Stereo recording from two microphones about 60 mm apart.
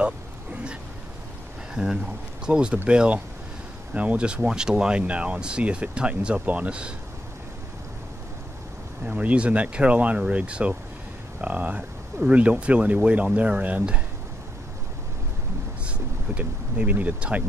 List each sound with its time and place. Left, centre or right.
0.0 s a sound: centre
1.8 s speech: centre
9.0 s speech: right
16.3 s speech: right